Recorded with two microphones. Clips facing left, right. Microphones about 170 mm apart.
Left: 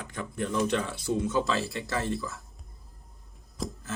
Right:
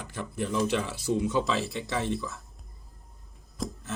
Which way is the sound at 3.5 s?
Centre (ahead or behind).